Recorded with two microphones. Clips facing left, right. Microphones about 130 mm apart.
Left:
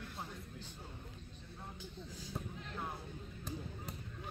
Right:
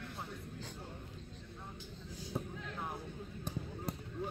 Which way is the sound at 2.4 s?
15° right (ahead or behind).